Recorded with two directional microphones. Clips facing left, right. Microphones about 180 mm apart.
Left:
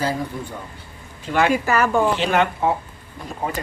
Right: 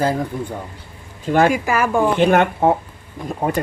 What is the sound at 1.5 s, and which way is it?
Speech, 10° right (ahead or behind).